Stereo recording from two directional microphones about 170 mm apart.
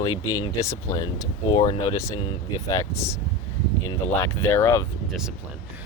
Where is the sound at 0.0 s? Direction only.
25° left (ahead or behind).